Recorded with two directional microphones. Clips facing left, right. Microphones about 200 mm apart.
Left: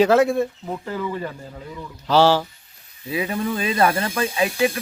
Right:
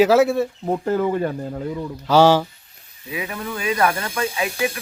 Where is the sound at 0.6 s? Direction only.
45° right (ahead or behind).